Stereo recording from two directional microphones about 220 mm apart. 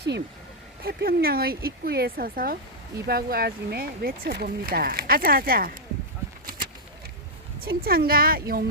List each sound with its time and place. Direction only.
0.9 s speech: 45° right (ahead or behind)
6.4 s a sound: 40° right (ahead or behind)
7.6 s speech: 45° right (ahead or behind)